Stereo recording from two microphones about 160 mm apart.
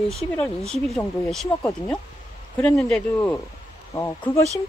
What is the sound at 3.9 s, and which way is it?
Speech, 15° left (ahead or behind).